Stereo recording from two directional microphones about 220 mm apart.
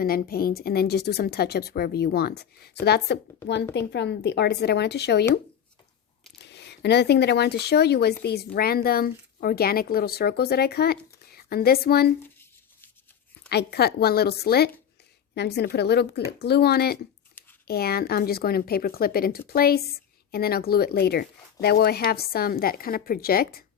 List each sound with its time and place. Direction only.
0.0 s a woman's voice: 40° left (ahead or behind)
6.4 s a woman's voice: 50° left (ahead or behind)
13.5 s a woman's voice: 45° left (ahead or behind)